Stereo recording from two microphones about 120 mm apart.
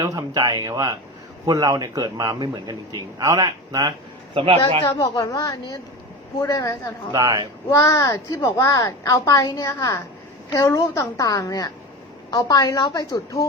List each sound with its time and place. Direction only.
0.0 s a man's voice: 30° right (ahead or behind)
4.4 s a man's voice: 50° right (ahead or behind)
4.8 s a woman's voice: 25° left (ahead or behind)
7.1 s a man's voice: 30° right (ahead or behind)
7.7 s a child's voice: 30° left (ahead or behind)